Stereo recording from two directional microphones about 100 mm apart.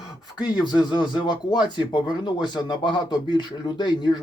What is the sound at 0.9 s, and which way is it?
Speech, 45° left (ahead or behind).